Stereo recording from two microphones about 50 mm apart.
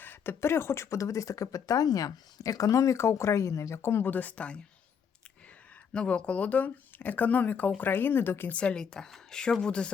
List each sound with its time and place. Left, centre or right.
0.0 s a sound: left
0.3 s speech: left
4.0 s speech: left
5.9 s speech: left
7.8 s speech: left
8.4 s speech: left